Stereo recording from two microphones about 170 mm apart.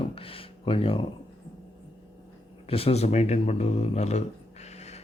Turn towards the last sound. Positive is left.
turn(degrees=40)  # may be behind; listen again after turning